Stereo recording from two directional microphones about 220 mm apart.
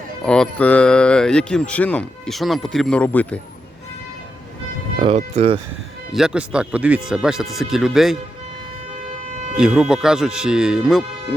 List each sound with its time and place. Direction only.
0.3 s speech: 5° left (ahead or behind)
4.9 s speech: 30° right (ahead or behind)
6.1 s speech: centre (ahead or behind)
9.6 s speech: 5° right (ahead or behind)